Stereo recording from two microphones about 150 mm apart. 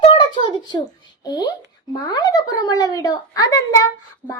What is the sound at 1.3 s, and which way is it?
A child's voice, 25° left (ahead or behind).